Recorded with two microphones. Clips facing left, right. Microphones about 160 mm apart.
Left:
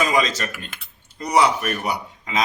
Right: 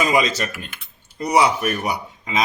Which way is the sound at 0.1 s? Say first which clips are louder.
Right 2 dB; 10° right (ahead or behind).